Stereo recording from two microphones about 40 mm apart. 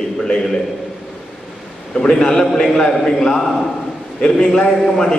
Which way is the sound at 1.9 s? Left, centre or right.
Centre.